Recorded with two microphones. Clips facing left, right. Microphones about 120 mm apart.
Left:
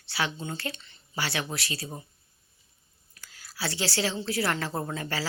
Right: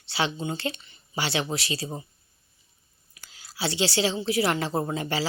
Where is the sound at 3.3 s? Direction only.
25° right (ahead or behind).